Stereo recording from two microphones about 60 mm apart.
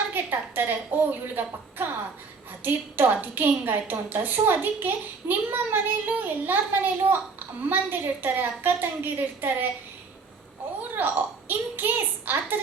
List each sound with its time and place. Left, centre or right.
0.1 s a woman's voice: right
10.9 s a woman's voice: right